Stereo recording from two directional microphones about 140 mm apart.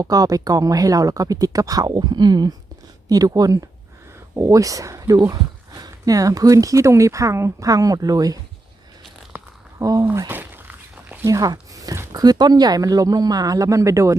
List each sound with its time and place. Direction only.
0.0 s speech: 25° right (ahead or behind)
9.7 s speech: 25° right (ahead or behind)
10.1 s a sound: 15° right (ahead or behind)
11.3 s speech: 25° right (ahead or behind)